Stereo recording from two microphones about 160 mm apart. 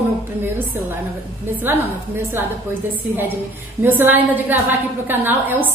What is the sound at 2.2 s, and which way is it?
Speech, 15° right (ahead or behind).